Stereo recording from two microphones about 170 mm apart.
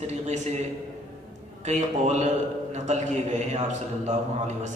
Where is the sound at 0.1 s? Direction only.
40° right (ahead or behind).